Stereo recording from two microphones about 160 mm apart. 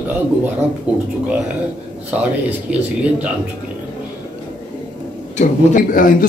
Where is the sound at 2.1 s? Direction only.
10° right (ahead or behind).